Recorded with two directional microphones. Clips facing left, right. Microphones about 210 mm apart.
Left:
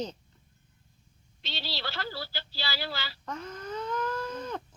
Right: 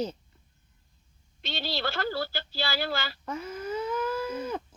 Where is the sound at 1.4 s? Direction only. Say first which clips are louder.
Right 6 dB; 50° right (ahead or behind).